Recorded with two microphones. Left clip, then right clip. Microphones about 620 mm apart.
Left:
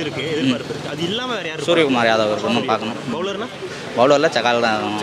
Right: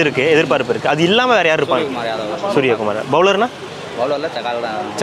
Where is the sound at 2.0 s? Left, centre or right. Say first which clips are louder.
Left 5 dB; left.